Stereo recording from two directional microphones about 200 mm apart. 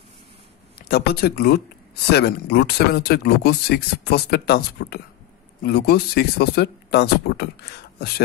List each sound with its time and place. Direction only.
0.8 s speech: 50° left (ahead or behind)